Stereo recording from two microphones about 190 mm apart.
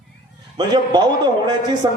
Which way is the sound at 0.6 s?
20° right (ahead or behind).